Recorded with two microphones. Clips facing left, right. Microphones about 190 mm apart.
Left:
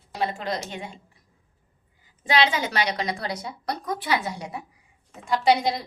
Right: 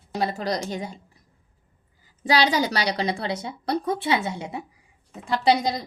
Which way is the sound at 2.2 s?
35° right (ahead or behind).